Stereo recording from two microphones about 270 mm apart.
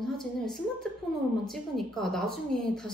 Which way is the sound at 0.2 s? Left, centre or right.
Centre.